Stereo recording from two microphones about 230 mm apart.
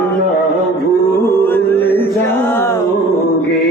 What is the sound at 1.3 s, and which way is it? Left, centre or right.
Music, centre.